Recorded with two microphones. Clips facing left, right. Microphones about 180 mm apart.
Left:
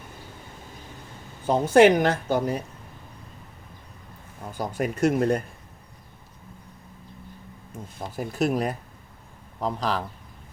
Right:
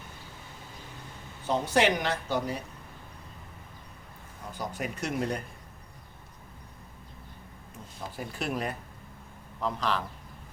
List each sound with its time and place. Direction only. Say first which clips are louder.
1.5 s a woman's voice: left 9 dB; 50° left (ahead or behind)
4.5 s a woman's voice: left 7 dB; 50° left (ahead or behind)
7.9 s speech: left 8 dB; 45° left (ahead or behind)